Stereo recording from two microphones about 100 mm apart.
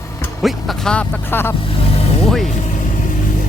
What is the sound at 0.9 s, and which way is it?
Speech, 20° left (ahead or behind).